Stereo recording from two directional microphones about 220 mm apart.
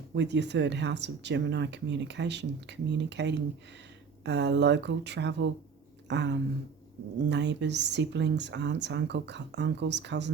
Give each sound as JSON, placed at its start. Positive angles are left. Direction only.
{"t": 0.1, "sound": "speech", "side_deg": -50}